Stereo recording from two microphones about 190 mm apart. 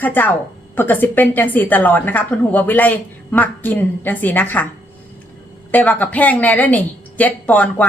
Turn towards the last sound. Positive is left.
turn(degrees=10)  # may be behind; listen again after turning